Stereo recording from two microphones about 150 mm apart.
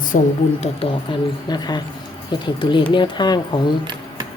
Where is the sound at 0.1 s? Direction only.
60° left (ahead or behind).